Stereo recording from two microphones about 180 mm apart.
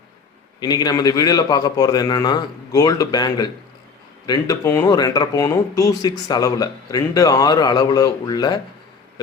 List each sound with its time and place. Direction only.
0.6 s a man's voice: 20° left (ahead or behind)